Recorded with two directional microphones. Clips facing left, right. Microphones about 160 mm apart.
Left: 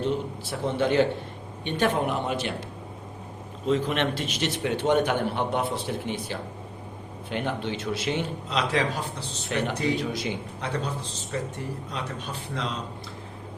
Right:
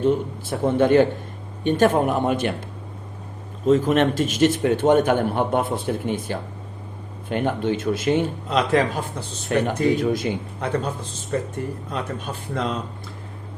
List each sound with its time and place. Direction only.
0.0 s a man's voice: 50° right (ahead or behind)
3.7 s a man's voice: 45° right (ahead or behind)